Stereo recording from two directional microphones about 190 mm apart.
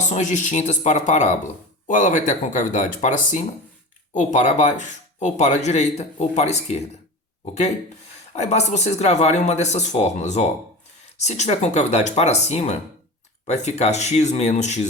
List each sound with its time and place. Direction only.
0.0 s speech: 40° left (ahead or behind)
8.4 s speech: 35° left (ahead or behind)